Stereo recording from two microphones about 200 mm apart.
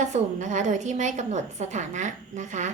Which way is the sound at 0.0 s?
35° right (ahead or behind).